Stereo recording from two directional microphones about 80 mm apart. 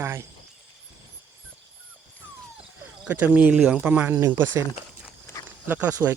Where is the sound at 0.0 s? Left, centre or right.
Right.